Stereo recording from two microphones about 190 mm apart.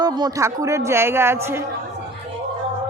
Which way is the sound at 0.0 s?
20° right (ahead or behind).